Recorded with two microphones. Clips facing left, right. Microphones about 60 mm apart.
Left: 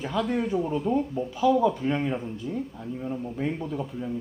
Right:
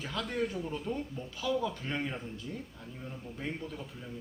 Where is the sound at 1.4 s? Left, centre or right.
Centre.